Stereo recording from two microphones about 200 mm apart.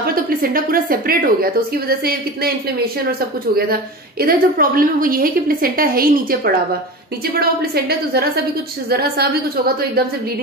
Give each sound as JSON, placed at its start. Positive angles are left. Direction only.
{"t": 0.0, "sound": "a woman's voice", "side_deg": -45}
{"t": 4.2, "sound": "a woman's voice", "side_deg": -45}